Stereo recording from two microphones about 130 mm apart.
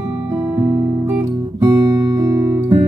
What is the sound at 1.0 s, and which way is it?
Guitar, 20° right (ahead or behind).